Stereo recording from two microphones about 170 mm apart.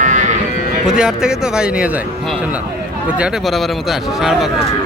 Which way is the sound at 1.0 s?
5° right (ahead or behind).